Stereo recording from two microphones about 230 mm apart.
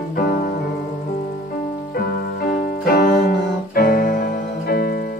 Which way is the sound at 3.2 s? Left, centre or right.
Left.